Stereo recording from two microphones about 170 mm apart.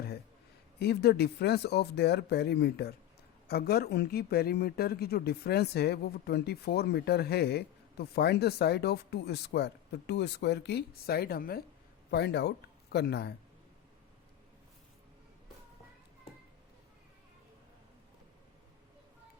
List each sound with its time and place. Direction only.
0.8 s speech: 70° left (ahead or behind)
12.1 s speech: 80° left